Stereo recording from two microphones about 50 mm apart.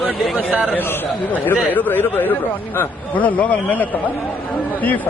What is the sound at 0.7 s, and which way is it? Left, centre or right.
A man's voice, left.